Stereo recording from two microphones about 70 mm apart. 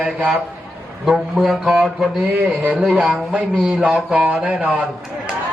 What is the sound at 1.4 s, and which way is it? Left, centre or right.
Speech, centre.